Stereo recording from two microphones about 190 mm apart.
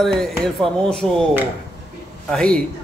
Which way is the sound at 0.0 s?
Centre (ahead or behind).